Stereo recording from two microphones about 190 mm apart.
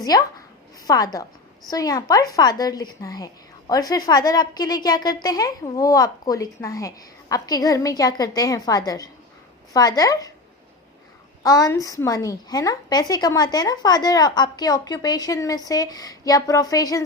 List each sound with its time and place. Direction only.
0.0 s a woman's voice: 20° left (ahead or behind)
11.4 s a woman's voice: 20° left (ahead or behind)